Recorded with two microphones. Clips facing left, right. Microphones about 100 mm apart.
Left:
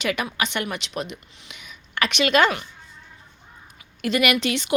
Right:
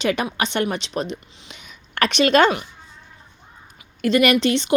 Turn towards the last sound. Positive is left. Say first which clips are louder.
# right 5 dB
turn(degrees=-30)  # may be behind; listen again after turning